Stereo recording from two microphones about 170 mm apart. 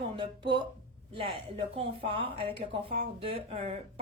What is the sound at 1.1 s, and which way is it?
A woman's voice, 30° right (ahead or behind).